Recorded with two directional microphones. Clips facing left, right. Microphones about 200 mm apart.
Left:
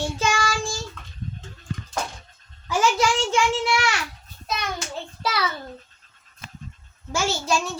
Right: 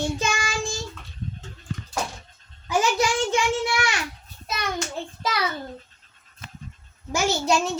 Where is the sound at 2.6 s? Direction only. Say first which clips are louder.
Left 1 dB; 20° right (ahead or behind).